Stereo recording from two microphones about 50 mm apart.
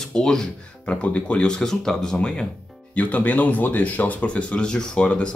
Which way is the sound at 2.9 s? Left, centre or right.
Left.